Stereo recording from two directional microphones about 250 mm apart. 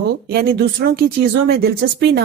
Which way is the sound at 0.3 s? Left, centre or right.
Right.